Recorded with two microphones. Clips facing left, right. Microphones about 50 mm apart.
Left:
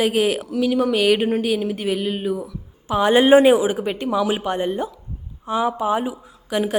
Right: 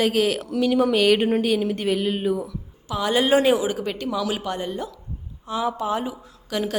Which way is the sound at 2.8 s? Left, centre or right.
Left.